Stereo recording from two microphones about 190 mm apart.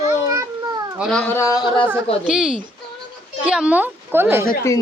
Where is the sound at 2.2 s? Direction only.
5° right (ahead or behind).